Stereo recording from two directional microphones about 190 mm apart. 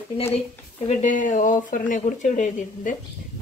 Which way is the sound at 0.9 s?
40° left (ahead or behind).